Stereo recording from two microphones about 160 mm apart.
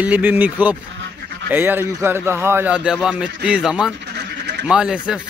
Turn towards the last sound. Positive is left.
turn(degrees=-5)  # may be behind; listen again after turning